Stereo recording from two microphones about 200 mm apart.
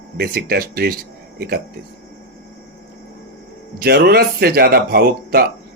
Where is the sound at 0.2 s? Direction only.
50° right (ahead or behind).